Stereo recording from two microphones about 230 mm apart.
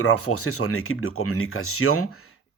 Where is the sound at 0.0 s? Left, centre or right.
Left.